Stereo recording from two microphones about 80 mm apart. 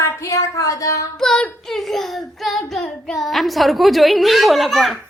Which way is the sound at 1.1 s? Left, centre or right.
Centre.